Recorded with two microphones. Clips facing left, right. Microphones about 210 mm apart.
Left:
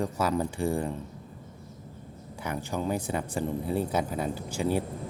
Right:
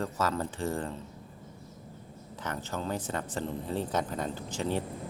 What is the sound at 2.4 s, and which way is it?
Speech, 10° left (ahead or behind).